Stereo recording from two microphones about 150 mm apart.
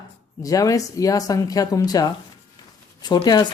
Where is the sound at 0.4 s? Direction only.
25° left (ahead or behind).